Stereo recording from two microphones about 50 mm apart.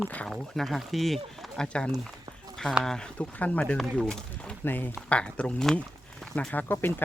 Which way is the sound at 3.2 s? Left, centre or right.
Left.